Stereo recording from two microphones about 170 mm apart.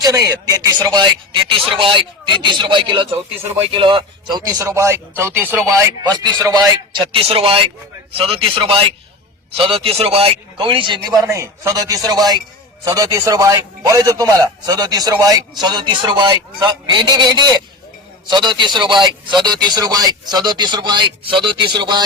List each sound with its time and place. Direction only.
0.0 s a man's voice: 20° right (ahead or behind)
5.6 s a man's voice: 25° right (ahead or behind)